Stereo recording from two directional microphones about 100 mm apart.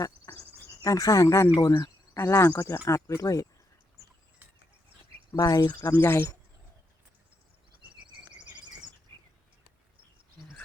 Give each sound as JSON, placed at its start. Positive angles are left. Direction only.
{"t": 0.3, "sound": "insect", "side_deg": 30}
{"t": 0.8, "sound": "speech", "side_deg": 35}
{"t": 5.3, "sound": "speech", "side_deg": 35}
{"t": 5.9, "sound": "speech", "side_deg": 20}